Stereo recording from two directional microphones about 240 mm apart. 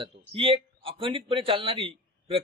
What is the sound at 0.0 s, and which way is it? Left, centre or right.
A man's voice, right.